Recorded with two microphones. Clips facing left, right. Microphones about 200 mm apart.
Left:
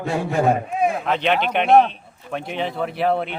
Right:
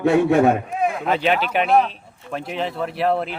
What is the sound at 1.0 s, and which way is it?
Speech, 5° right (ahead or behind).